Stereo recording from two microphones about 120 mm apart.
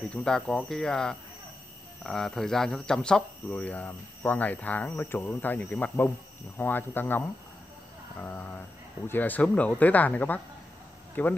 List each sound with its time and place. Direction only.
0.1 s cricket: 5° left (ahead or behind)
2.0 s speech: 5° left (ahead or behind)